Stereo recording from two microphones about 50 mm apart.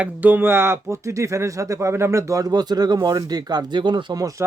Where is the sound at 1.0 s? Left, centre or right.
Right.